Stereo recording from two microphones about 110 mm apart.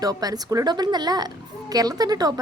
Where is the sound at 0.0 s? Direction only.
35° right (ahead or behind).